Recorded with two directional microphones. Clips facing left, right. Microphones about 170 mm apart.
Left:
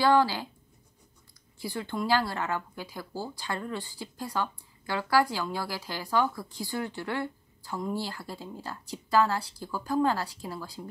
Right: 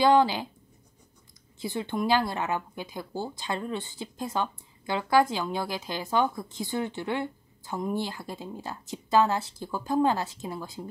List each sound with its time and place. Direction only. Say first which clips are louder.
0.0 s speech: right 2 dB; 20° right (ahead or behind)
1.6 s speech: right 3 dB; 20° right (ahead or behind)